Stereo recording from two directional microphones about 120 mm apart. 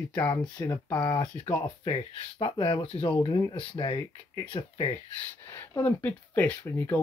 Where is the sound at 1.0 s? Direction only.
35° left (ahead or behind).